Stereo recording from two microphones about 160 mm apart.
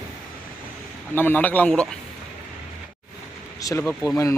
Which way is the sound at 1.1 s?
10° left (ahead or behind).